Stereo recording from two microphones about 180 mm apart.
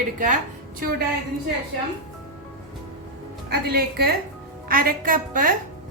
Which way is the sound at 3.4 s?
55° right (ahead or behind).